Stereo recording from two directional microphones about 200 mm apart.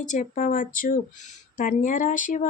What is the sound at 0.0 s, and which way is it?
A woman's voice, 40° left (ahead or behind).